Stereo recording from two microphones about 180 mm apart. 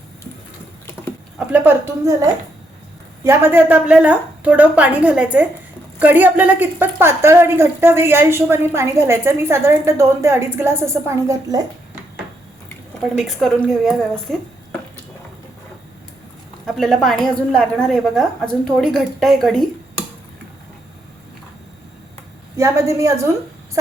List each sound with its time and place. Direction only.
1.4 s a woman's voice: 5° right (ahead or behind)
12.6 s speech: centre (ahead or behind)
16.6 s a woman's voice: centre (ahead or behind)
22.5 s a woman's voice: 15° right (ahead or behind)